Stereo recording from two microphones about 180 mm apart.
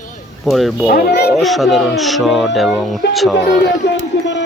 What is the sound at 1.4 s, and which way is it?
Speech, centre (ahead or behind).